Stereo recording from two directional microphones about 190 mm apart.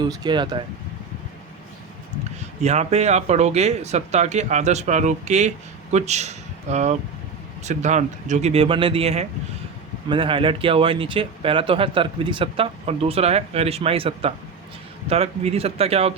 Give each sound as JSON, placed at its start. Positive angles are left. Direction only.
{"t": 0.0, "sound": "speech", "side_deg": -20}
{"t": 2.6, "sound": "speech", "side_deg": -35}